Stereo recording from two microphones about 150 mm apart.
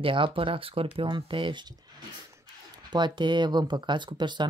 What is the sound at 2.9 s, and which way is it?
Speech, 30° right (ahead or behind).